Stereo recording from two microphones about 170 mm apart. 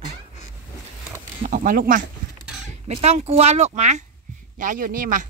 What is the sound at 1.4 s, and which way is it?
Speech, 55° right (ahead or behind).